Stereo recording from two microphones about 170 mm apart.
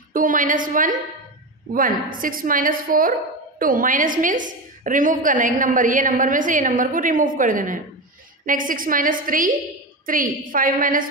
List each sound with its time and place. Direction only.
0.1 s a woman's voice: 50° right (ahead or behind)